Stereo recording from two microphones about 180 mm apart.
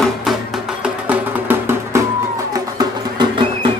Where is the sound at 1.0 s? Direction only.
10° right (ahead or behind).